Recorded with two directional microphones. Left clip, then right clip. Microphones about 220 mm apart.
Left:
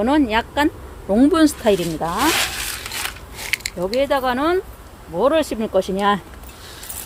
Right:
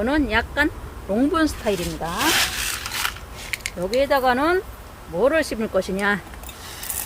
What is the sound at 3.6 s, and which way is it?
Speech, 20° left (ahead or behind).